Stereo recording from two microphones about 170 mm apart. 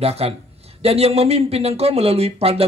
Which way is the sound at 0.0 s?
35° right (ahead or behind).